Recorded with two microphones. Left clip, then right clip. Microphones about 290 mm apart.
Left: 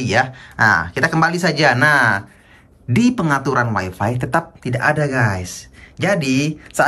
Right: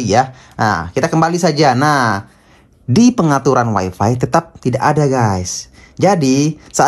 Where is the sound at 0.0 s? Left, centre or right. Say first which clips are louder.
Right 4 dB; centre.